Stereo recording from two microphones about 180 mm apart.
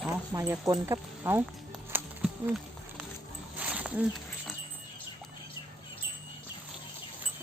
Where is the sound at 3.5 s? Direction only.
10° right (ahead or behind).